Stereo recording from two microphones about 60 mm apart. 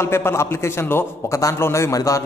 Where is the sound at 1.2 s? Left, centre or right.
Left.